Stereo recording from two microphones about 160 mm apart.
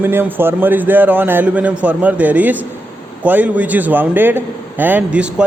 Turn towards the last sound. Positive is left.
turn(degrees=-5)  # may be behind; listen again after turning